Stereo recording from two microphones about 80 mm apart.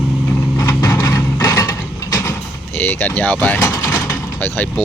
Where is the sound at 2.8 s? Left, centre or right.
Left.